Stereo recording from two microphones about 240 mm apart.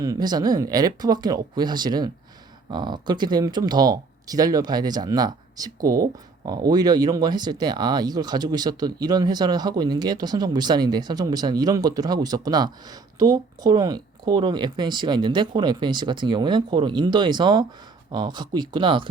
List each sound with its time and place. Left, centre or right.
0.0 s speech: centre